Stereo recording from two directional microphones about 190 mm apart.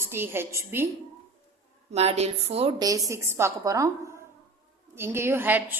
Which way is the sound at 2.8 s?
15° right (ahead or behind).